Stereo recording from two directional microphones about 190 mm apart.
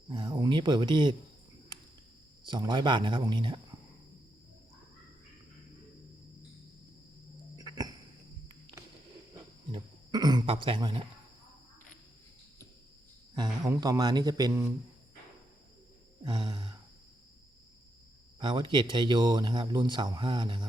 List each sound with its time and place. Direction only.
0.1 s speech: 25° right (ahead or behind)
2.4 s speech: 25° right (ahead or behind)
7.6 s a sound: 20° right (ahead or behind)
9.7 s speech: 20° right (ahead or behind)
13.3 s speech: 20° right (ahead or behind)
16.2 s speech: 20° right (ahead or behind)
18.3 s speech: 25° right (ahead or behind)